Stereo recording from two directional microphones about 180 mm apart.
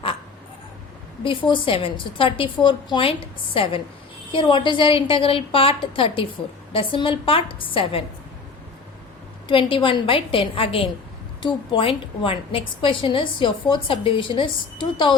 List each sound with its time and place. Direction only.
1.2 s a woman's voice: 30° left (ahead or behind)
9.5 s a woman's voice: 30° left (ahead or behind)